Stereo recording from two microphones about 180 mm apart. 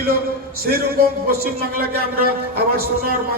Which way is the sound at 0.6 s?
55° right (ahead or behind).